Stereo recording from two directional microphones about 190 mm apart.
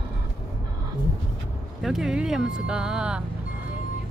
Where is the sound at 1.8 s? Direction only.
Centre (ahead or behind).